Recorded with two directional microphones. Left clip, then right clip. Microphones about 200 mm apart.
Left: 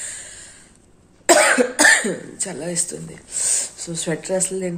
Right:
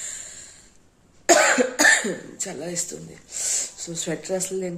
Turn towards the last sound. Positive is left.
turn(degrees=0)  # may be behind; listen again after turning